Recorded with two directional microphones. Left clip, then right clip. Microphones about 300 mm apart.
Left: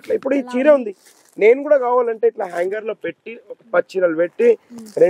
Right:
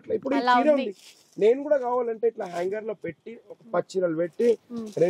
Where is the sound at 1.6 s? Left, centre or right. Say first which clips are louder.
Left 9 dB; centre.